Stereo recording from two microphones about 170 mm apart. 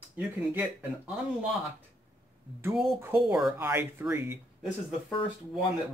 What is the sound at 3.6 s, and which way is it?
Speech, 10° right (ahead or behind).